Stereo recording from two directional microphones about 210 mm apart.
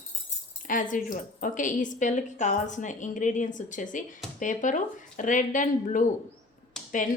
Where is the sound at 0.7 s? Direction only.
40° left (ahead or behind).